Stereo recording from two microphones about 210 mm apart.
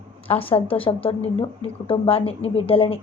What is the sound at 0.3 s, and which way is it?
Speech, 25° left (ahead or behind).